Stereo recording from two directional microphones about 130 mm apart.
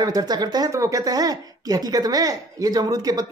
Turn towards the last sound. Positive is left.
turn(degrees=-30)  # may be behind; listen again after turning